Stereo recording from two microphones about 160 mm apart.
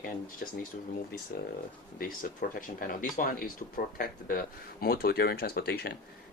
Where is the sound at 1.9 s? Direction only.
65° left (ahead or behind).